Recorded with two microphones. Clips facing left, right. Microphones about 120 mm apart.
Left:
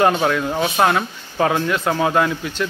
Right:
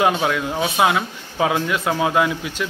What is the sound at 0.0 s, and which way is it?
Speech, 5° right (ahead or behind).